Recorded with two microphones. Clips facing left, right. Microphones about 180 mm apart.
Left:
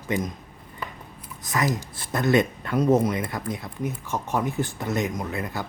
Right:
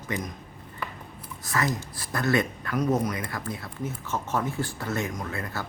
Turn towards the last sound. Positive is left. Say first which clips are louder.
# left 3 dB
turn(degrees=15)  # may be behind; listen again after turning